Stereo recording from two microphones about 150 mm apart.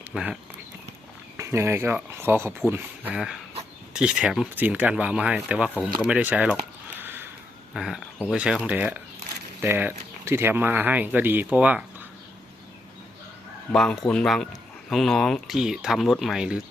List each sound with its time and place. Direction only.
0.1 s speech: 5° right (ahead or behind)
1.4 s speech: 15° right (ahead or behind)
3.2 s speech: centre (ahead or behind)
7.0 s a sound: 15° right (ahead or behind)
7.7 s speech: centre (ahead or behind)
13.7 s speech: 5° left (ahead or behind)